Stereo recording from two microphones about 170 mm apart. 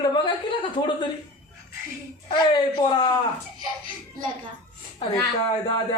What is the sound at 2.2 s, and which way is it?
Speech, 30° left (ahead or behind).